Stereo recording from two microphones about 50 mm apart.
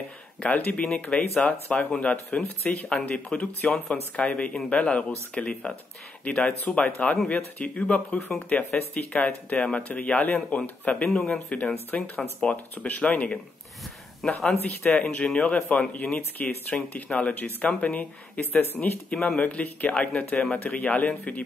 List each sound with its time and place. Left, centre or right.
0.4 s speech: left
2.4 s speech: left
4.3 s speech: left
14.2 s speech: centre
14.8 s speech: left
18.4 s speech: left
19.2 s speech: left